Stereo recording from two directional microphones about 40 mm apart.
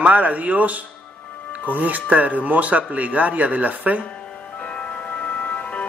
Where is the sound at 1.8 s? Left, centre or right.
Right.